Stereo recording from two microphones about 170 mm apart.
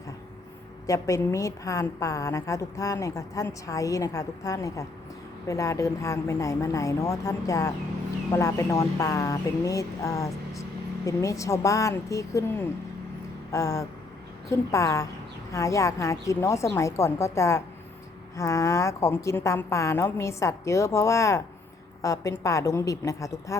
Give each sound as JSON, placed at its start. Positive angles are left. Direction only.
{"t": 0.9, "sound": "a woman's voice", "side_deg": 20}